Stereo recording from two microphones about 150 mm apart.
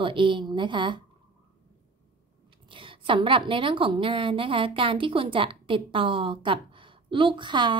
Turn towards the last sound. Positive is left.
turn(degrees=-30)  # may be behind; listen again after turning